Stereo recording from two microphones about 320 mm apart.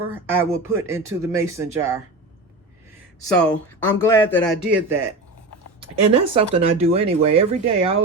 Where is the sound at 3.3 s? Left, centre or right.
Centre.